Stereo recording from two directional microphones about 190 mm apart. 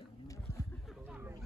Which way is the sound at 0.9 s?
10° right (ahead or behind).